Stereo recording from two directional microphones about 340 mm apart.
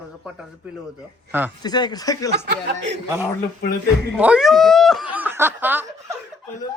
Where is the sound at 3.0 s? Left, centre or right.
Centre.